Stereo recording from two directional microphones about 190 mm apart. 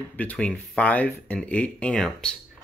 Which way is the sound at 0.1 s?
10° left (ahead or behind).